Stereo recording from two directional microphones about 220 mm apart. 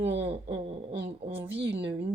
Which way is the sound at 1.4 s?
50° right (ahead or behind).